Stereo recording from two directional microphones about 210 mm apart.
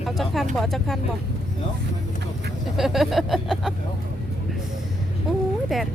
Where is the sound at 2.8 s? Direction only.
Centre (ahead or behind).